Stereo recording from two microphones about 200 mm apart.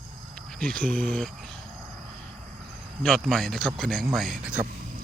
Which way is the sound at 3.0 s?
Centre (ahead or behind).